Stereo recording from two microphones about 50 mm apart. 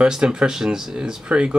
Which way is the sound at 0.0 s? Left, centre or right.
Centre.